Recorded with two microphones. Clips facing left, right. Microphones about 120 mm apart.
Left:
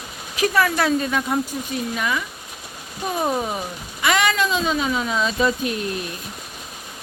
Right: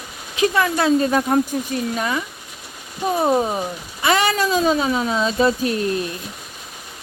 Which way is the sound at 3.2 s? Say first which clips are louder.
Right 5 dB; 20° right (ahead or behind).